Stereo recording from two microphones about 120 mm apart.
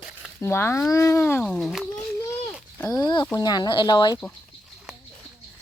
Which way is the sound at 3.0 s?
35° left (ahead or behind).